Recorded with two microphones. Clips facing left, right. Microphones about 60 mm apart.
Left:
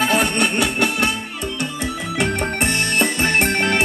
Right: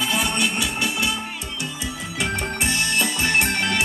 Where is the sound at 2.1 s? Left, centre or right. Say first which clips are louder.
Left 4 dB; left.